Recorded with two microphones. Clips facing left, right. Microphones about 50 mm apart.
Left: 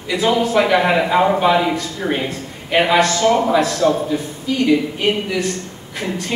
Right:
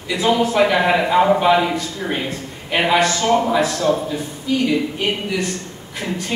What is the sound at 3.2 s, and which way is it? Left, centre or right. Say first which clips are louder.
Speech: left 2 dB; centre.